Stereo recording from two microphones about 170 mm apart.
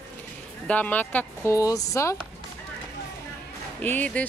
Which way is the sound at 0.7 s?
10° left (ahead or behind).